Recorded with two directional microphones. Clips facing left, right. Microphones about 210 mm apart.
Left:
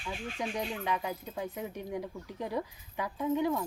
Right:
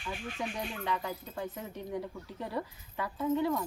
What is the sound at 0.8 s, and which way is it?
Speech, 15° left (ahead or behind).